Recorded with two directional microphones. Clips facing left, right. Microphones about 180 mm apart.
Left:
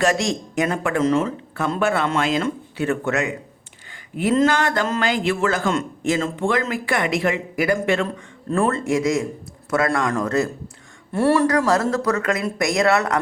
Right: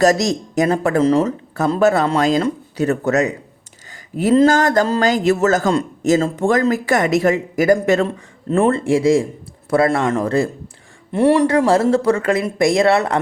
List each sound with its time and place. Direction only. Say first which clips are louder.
0.0 s a man's voice: right 5 dB; 40° right (ahead or behind)
8.0 s speech: right 4 dB; 25° right (ahead or behind)
11.1 s speech: right 4 dB; 20° right (ahead or behind)